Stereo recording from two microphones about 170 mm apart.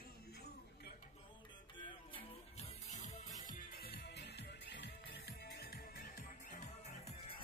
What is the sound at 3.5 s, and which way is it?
Music, 65° left (ahead or behind).